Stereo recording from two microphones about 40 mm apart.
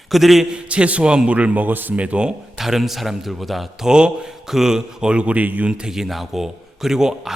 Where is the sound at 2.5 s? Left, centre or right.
Centre.